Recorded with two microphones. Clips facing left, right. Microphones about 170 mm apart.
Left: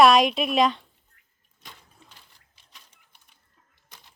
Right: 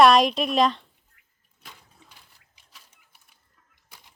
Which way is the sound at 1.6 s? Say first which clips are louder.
Even; 5° right (ahead or behind).